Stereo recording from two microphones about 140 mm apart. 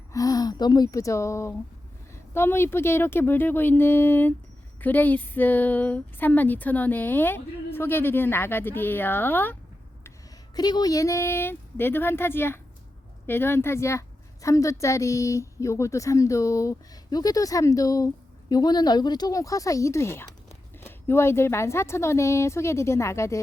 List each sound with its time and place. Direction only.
0.1 s speech: 25° left (ahead or behind)
10.5 s speech: 30° left (ahead or behind)